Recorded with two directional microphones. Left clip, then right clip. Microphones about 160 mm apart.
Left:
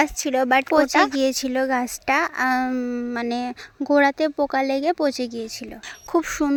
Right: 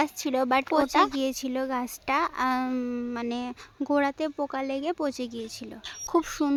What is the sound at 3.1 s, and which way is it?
Speech, 25° left (ahead or behind).